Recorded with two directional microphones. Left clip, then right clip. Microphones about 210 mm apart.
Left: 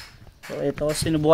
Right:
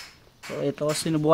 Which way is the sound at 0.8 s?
5° left (ahead or behind).